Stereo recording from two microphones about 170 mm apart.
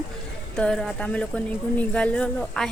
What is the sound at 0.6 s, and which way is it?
A woman's voice, 5° left (ahead or behind).